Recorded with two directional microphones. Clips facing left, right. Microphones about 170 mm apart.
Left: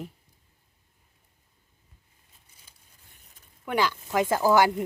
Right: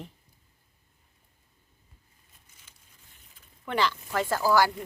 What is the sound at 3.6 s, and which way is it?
Speech, 10° left (ahead or behind).